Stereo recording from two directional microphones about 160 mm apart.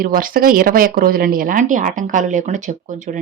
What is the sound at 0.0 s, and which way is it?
Speech, 65° right (ahead or behind).